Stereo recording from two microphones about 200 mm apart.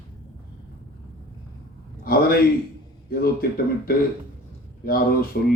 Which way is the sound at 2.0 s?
50° left (ahead or behind).